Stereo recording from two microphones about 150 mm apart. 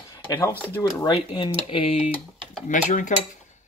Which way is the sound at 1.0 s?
30° left (ahead or behind).